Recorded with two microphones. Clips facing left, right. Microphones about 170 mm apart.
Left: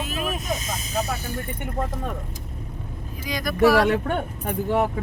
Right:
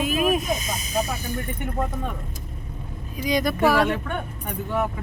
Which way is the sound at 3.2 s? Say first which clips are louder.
Right 6 dB; 20° right (ahead or behind).